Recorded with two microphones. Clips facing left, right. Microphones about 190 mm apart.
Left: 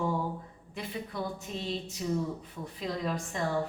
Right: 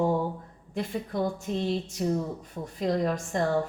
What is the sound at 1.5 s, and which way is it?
A woman's voice, 50° right (ahead or behind).